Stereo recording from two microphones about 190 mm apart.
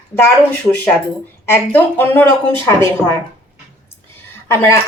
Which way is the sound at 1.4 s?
10° left (ahead or behind).